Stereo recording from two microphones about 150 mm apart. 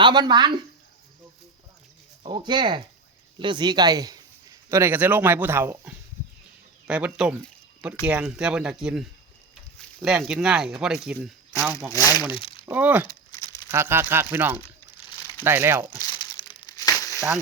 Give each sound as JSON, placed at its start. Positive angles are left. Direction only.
{"t": 0.0, "sound": "speech", "side_deg": -30}
{"t": 2.2, "sound": "speech", "side_deg": -30}
{"t": 12.4, "sound": "a sound", "side_deg": 35}
{"t": 12.6, "sound": "speech", "side_deg": -10}
{"t": 13.1, "sound": "a sound", "side_deg": 25}
{"t": 13.7, "sound": "speech", "side_deg": -15}
{"t": 16.0, "sound": "crumpling", "side_deg": 30}
{"t": 17.2, "sound": "speech", "side_deg": -5}